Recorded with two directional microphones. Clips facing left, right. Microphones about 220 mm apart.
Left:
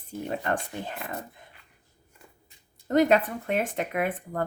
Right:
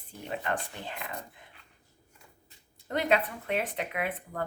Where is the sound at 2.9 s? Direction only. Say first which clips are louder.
Left 7 dB; 45° left (ahead or behind).